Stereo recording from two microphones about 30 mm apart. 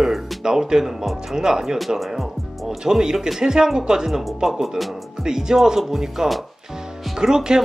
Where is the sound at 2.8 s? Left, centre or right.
Right.